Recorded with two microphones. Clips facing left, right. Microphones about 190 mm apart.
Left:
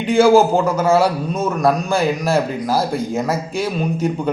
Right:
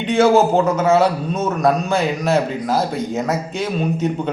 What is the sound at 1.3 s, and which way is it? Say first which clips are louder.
Speech: even; 5° right (ahead or behind).